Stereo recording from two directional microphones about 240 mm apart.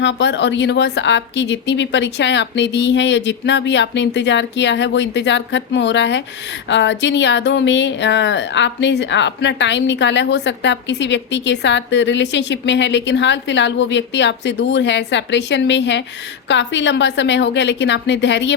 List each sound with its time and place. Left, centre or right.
0.0 s speech: left